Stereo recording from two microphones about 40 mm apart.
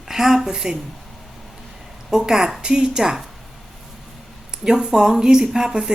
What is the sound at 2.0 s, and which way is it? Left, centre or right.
A woman's voice, centre.